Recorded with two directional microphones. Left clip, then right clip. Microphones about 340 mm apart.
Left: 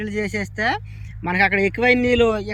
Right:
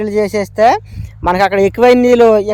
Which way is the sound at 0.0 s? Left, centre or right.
Centre.